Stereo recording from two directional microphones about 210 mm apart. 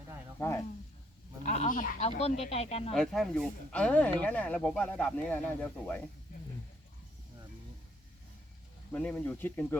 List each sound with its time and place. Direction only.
0.3 s speech: 10° left (ahead or behind)
1.5 s speech: 35° left (ahead or behind)
2.9 s speech: centre (ahead or behind)
8.9 s speech: 5° left (ahead or behind)